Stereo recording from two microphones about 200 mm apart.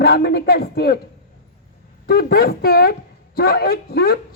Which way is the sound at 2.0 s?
50° left (ahead or behind).